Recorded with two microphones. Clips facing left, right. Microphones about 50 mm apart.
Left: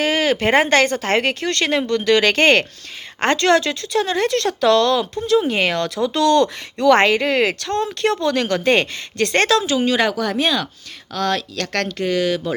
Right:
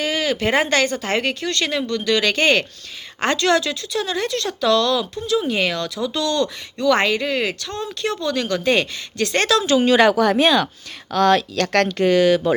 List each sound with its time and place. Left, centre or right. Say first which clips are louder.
0.0 s speech: left 3 dB; left
8.6 s speech: left 2 dB; left
9.6 s a woman's voice: right 3 dB; centre
10.1 s speech: right 4 dB; centre